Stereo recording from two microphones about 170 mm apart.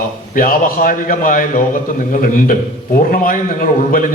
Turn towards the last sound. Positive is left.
turn(degrees=50)  # may be behind; listen again after turning